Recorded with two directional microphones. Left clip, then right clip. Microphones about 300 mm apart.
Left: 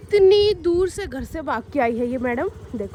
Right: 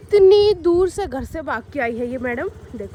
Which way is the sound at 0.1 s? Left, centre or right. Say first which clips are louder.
Right 3 dB; centre.